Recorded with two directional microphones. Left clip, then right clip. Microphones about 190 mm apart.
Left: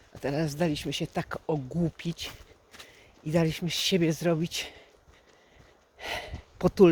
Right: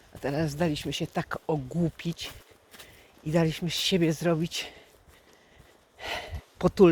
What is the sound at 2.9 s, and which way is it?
Speech, centre (ahead or behind).